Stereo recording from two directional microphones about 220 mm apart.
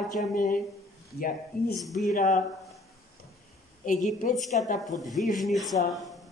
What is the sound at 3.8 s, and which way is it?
Speech, 35° left (ahead or behind).